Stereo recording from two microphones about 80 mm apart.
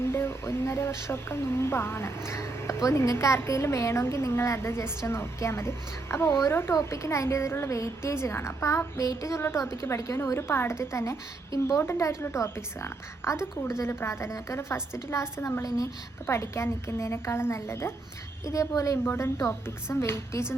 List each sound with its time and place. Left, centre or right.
0.0 s a child's voice: left
19.0 s a child's voice: left